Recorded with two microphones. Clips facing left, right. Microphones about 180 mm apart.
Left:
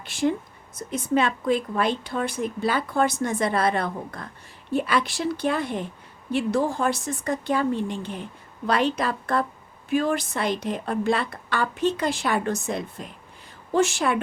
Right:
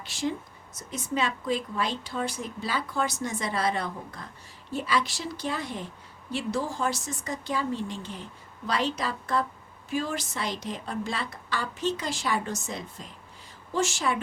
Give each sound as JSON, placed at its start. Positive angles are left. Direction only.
{"t": 0.0, "sound": "speech", "side_deg": 55}